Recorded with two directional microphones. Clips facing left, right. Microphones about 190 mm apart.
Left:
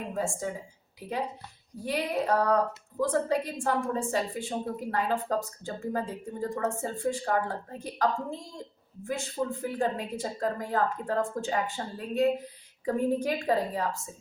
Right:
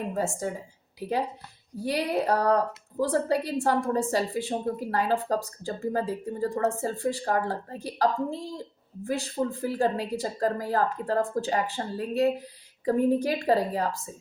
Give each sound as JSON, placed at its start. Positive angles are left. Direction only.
{"t": 0.1, "sound": "a woman's voice", "side_deg": -40}
{"t": 1.8, "sound": "a woman's voice", "side_deg": -35}